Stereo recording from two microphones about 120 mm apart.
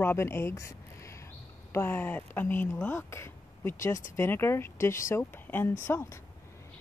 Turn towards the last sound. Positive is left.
turn(degrees=20)  # may be behind; listen again after turning